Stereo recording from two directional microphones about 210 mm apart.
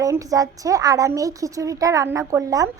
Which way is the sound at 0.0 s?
15° right (ahead or behind).